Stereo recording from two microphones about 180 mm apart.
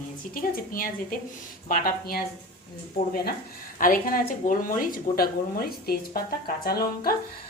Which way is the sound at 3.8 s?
50° left (ahead or behind).